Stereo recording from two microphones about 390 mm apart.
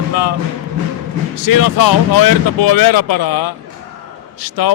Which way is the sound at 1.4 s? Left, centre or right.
Left.